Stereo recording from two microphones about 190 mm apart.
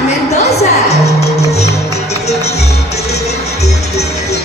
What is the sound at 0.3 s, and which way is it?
Music, 35° left (ahead or behind).